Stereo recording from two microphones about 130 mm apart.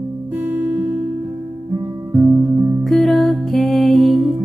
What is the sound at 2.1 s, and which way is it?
Music, 25° right (ahead or behind).